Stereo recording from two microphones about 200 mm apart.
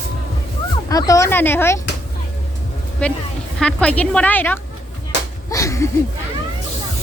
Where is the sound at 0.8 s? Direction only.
15° left (ahead or behind).